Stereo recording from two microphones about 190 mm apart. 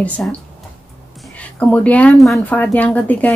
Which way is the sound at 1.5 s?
5° left (ahead or behind).